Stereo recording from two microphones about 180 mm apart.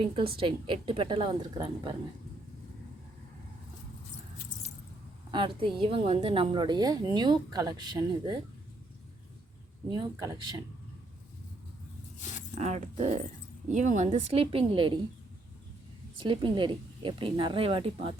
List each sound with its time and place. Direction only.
0.0 s a woman's voice: 30° right (ahead or behind)
5.3 s a woman's voice: 25° right (ahead or behind)
9.9 s a woman's voice: 20° right (ahead or behind)
12.5 s a woman's voice: 40° right (ahead or behind)
16.1 s a woman's voice: 25° right (ahead or behind)